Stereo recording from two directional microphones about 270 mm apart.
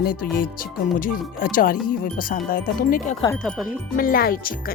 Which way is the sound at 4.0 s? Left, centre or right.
Left.